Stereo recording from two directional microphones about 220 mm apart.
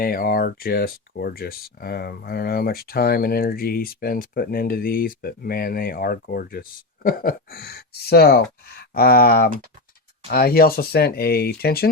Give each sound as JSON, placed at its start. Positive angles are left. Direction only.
{"t": 0.0, "sound": "speech", "side_deg": 40}